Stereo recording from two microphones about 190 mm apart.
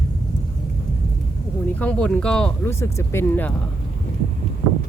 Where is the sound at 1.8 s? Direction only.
5° left (ahead or behind).